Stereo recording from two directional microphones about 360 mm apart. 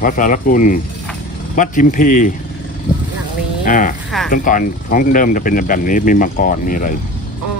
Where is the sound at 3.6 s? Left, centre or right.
Left.